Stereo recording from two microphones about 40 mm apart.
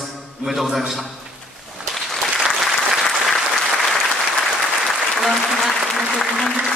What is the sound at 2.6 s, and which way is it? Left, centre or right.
Applause, centre.